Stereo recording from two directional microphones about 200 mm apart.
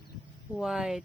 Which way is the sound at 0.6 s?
Centre (ahead or behind).